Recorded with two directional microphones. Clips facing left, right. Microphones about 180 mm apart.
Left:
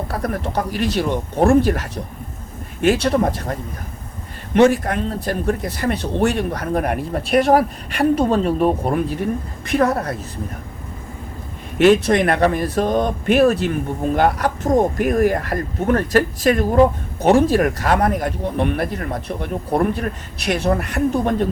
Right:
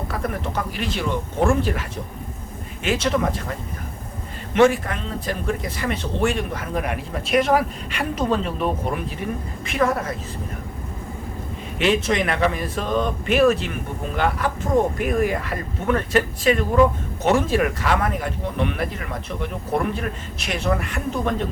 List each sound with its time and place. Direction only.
0.1 s speech: 40° left (ahead or behind)
4.7 s speech: 45° left (ahead or behind)
11.8 s speech: 40° left (ahead or behind)